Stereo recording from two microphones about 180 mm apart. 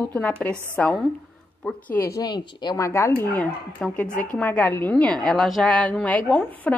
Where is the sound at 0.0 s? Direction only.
10° left (ahead or behind).